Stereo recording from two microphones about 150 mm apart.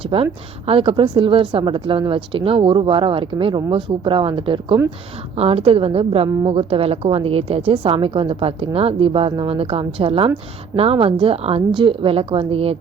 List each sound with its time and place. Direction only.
0.1 s speech: 35° right (ahead or behind)